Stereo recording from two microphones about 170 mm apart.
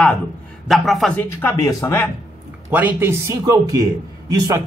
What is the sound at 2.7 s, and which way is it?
A man's voice, 10° right (ahead or behind).